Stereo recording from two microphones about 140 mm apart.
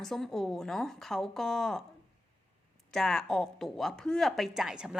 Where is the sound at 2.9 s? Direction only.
5° left (ahead or behind).